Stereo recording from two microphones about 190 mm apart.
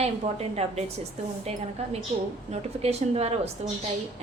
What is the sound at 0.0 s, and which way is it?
Speech, 35° right (ahead or behind).